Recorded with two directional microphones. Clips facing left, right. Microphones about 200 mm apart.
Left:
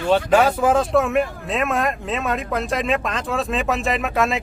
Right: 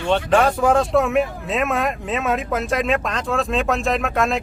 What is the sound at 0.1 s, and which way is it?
Speech, 5° left (ahead or behind).